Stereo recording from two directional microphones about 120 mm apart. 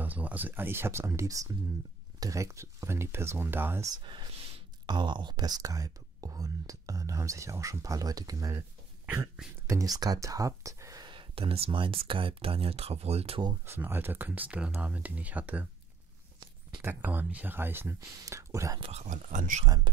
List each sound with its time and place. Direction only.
0.0 s speech: 15° right (ahead or behind)
4.0 s speech: 45° right (ahead or behind)
9.7 s speech: 30° right (ahead or behind)
11.1 s speech: 45° right (ahead or behind)
13.7 s speech: 20° right (ahead or behind)
16.8 s speech: 15° right (ahead or behind)
18.8 s speech: 65° right (ahead or behind); by 19.6 s 90° right
19.6 s speech: 35° right (ahead or behind)